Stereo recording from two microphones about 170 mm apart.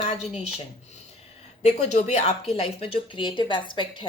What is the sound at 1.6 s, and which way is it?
A woman's voice, 40° left (ahead or behind).